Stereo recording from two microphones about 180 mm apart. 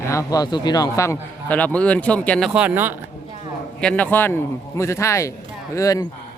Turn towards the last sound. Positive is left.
turn(degrees=20)  # may be behind; listen again after turning